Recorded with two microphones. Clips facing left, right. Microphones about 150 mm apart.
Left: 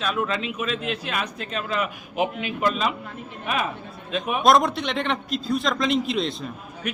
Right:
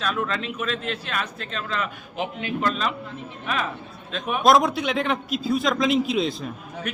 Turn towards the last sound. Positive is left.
turn(degrees=-5)  # may be behind; listen again after turning